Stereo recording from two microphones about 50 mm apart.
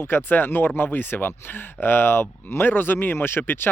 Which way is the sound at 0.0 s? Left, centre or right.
Left.